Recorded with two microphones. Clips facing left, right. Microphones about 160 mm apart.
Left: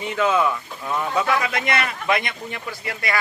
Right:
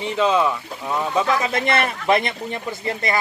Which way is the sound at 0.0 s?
25° right (ahead or behind).